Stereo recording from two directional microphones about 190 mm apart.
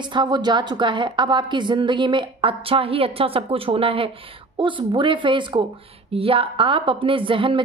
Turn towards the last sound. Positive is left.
turn(degrees=-25)  # may be behind; listen again after turning